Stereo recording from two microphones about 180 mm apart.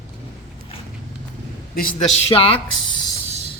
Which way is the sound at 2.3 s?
30° left (ahead or behind).